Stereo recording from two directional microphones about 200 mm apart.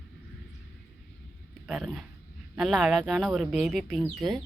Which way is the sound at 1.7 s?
Centre (ahead or behind).